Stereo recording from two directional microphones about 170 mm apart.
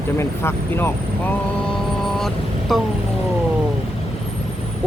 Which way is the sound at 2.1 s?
Centre (ahead or behind).